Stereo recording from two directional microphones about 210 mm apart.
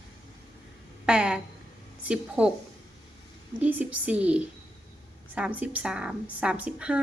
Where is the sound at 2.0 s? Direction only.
5° right (ahead or behind).